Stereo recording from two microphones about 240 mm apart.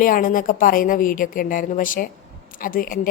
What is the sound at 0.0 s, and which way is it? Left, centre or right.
Speech, left.